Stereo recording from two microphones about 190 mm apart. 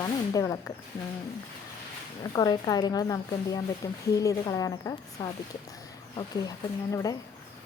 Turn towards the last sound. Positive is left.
turn(degrees=20)  # may be behind; listen again after turning